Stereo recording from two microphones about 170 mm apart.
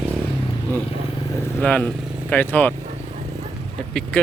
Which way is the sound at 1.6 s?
5° left (ahead or behind).